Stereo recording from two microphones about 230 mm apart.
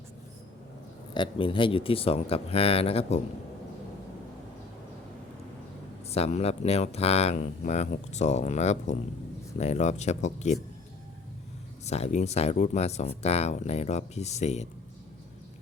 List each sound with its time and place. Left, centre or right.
1.1 s speech: left
6.1 s speech: left
11.9 s speech: left